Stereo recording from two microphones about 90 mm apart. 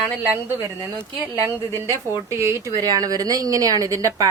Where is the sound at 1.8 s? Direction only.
35° right (ahead or behind).